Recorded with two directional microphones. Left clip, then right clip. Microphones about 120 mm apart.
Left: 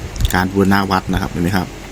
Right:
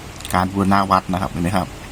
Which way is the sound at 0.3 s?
10° left (ahead or behind).